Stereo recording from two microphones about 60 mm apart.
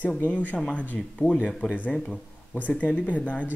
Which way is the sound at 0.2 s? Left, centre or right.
Left.